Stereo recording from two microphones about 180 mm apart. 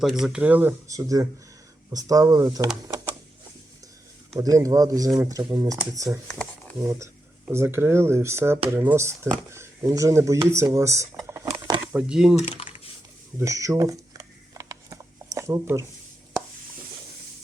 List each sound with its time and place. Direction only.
0.0 s speech: centre (ahead or behind); by 2.6 s 20° right (ahead or behind)
2.8 s a sound: 20° right (ahead or behind)
4.4 s speech: 20° right (ahead or behind)
11.9 s speech: 5° right (ahead or behind)
12.4 s typing: 30° left (ahead or behind)
13.4 s a sound: 15° right (ahead or behind)